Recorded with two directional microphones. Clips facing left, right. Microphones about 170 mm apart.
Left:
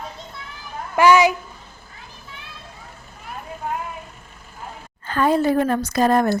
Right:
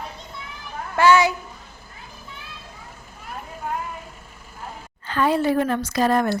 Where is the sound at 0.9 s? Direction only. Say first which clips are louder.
Left 2 dB; 15° left (ahead or behind).